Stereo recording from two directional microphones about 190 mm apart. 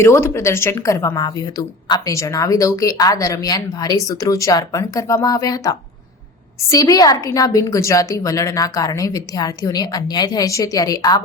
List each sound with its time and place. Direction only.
0.0 s a woman's voice: 15° left (ahead or behind)